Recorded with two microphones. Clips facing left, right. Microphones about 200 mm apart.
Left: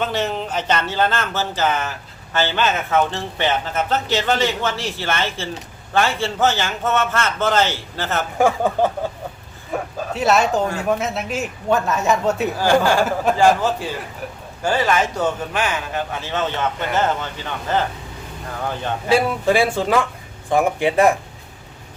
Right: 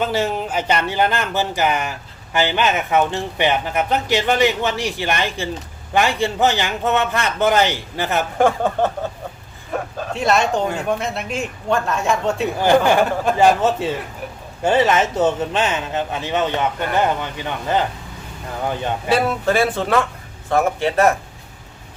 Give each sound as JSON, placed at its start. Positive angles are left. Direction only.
{"t": 0.0, "sound": "speech", "side_deg": -10}
{"t": 8.4, "sound": "speech", "side_deg": 10}
{"t": 12.5, "sound": "speech", "side_deg": -20}
{"t": 19.1, "sound": "speech", "side_deg": 10}